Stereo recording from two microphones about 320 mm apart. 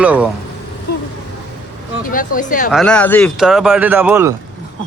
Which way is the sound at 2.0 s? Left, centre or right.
Left.